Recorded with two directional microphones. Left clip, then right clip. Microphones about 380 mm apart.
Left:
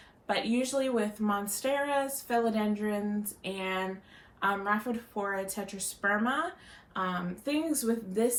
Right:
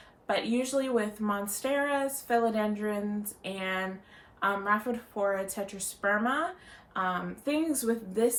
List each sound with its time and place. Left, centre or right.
0.3 s speech: centre